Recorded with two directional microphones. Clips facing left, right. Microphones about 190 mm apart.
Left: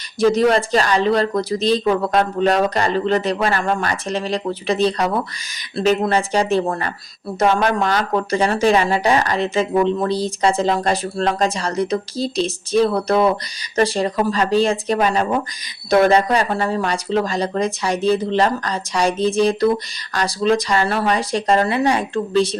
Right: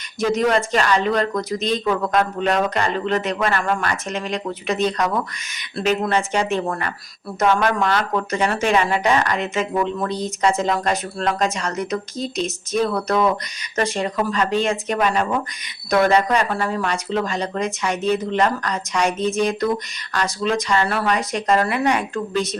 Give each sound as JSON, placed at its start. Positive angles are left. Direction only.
{"t": 0.2, "sound": "speech", "side_deg": 30}